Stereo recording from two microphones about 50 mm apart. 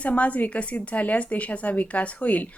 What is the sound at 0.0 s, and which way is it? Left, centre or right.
Speech, left.